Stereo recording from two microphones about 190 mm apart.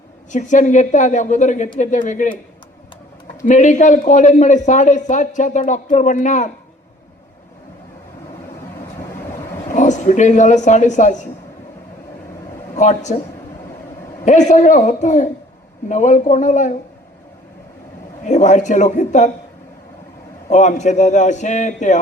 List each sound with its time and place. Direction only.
0.3 s a man's voice: 40° left (ahead or behind)
3.4 s a man's voice: 40° left (ahead or behind)
9.7 s a man's voice: 40° left (ahead or behind)
12.7 s speech: 35° left (ahead or behind)
14.3 s a man's voice: 40° left (ahead or behind)
18.3 s a man's voice: 40° left (ahead or behind)
20.5 s a man's voice: 40° left (ahead or behind)